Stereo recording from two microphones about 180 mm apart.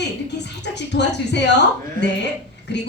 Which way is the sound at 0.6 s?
70° left (ahead or behind).